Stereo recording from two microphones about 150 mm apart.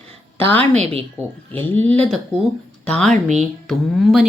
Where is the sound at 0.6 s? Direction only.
45° right (ahead or behind).